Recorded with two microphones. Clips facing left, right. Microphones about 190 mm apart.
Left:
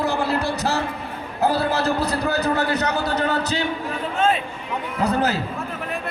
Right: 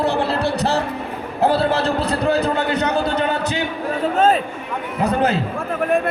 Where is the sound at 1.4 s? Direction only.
30° right (ahead or behind).